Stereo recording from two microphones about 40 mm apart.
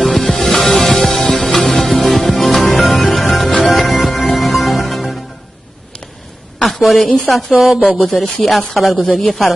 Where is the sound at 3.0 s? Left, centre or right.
Centre.